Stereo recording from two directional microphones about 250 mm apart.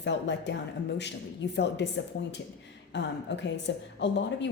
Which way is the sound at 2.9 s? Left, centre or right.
Left.